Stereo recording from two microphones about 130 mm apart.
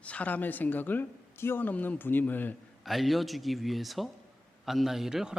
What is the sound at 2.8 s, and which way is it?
A man's voice, centre (ahead or behind).